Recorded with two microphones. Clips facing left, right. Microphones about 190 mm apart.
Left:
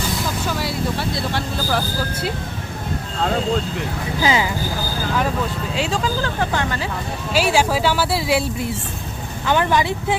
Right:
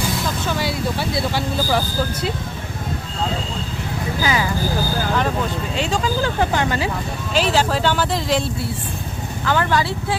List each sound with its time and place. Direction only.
0.4 s vehicle: centre (ahead or behind)
4.2 s speech: 25° left (ahead or behind)
5.7 s speech: 5° left (ahead or behind)
6.2 s speech: 15° right (ahead or behind)
7.3 s speech: 10° left (ahead or behind)
9.5 s speech: 20° left (ahead or behind)